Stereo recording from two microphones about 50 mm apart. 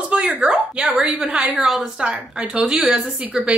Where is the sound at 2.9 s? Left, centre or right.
Right.